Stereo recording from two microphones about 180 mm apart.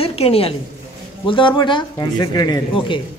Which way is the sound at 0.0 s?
35° left (ahead or behind).